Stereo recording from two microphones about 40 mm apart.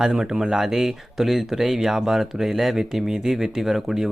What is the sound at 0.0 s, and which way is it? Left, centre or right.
Speech, centre.